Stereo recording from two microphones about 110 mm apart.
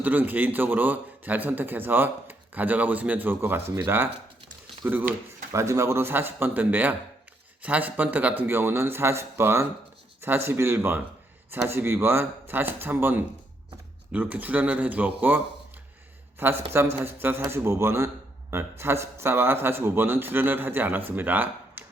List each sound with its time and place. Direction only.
0.0 s a man's voice: 15° right (ahead or behind)
5.5 s a man's voice: 30° right (ahead or behind)
16.4 s a man's voice: 20° right (ahead or behind)